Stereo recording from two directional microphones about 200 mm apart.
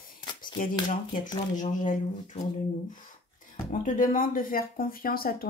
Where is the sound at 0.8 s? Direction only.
40° left (ahead or behind).